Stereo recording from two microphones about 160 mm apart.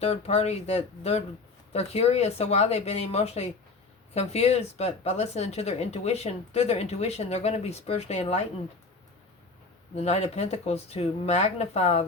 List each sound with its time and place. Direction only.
0.0 s speech: 40° left (ahead or behind)
9.9 s speech: 40° left (ahead or behind)